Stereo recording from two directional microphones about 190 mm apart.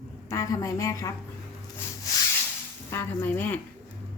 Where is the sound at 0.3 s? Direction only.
15° left (ahead or behind).